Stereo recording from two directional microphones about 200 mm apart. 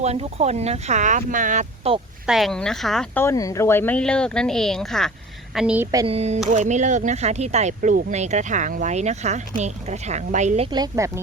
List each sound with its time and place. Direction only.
0.0 s speech: 30° right (ahead or behind)
2.2 s speech: centre (ahead or behind)
3.2 s speech: 15° left (ahead or behind); by 6.1 s 15° right (ahead or behind)
6.1 s speech: 30° right (ahead or behind)
10.7 s speech: 20° right (ahead or behind)